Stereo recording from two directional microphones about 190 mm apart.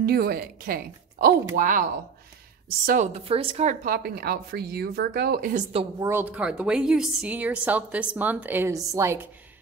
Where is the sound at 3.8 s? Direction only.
55° right (ahead or behind); by 5.8 s 40° right (ahead or behind).